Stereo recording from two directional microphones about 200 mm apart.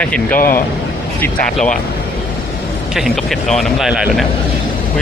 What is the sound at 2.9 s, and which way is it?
Speech, centre (ahead or behind).